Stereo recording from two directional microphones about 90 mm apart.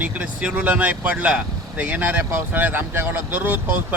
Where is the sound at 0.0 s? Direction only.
15° right (ahead or behind).